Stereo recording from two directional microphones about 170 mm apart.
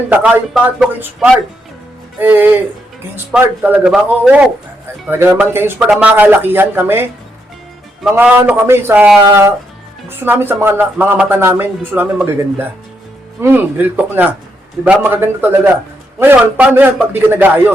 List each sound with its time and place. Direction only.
0.1 s speech: 5° right (ahead or behind)